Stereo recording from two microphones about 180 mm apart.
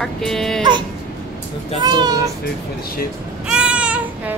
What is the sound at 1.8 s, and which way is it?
Speech, 20° right (ahead or behind).